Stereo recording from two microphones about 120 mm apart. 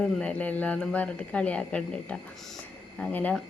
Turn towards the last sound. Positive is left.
turn(degrees=15)  # may be behind; listen again after turning